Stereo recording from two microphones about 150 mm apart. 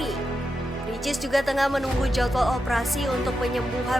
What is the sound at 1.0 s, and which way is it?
Speech, centre (ahead or behind).